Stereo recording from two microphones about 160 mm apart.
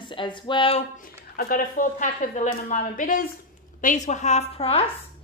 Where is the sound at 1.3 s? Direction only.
60° left (ahead or behind).